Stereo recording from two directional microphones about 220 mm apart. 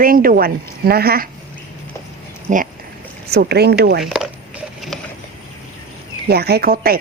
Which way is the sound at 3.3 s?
45° right (ahead or behind).